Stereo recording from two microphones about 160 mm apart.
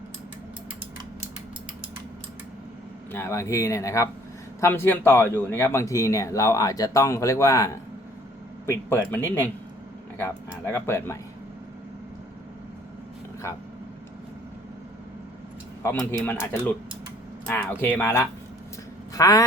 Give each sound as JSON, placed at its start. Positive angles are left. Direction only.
{"t": 3.1, "sound": "speech", "side_deg": 15}
{"t": 15.8, "sound": "speech", "side_deg": 20}
{"t": 19.1, "sound": "a sound", "side_deg": 20}